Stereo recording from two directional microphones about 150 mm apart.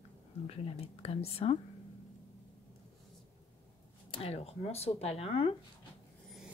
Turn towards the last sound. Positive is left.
turn(degrees=40)  # may be behind; listen again after turning